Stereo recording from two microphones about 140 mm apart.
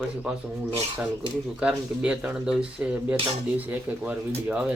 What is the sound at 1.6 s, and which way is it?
Speech, 10° right (ahead or behind).